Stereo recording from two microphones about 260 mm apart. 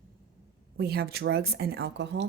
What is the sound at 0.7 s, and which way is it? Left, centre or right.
Speech, right.